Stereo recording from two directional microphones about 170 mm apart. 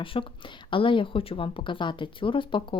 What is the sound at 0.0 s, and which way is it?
A woman's voice, 30° left (ahead or behind).